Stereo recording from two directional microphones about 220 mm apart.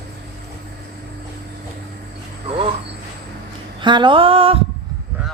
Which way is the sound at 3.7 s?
20° right (ahead or behind).